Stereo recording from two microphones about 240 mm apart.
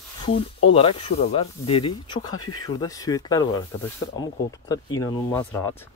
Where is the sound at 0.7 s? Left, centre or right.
Left.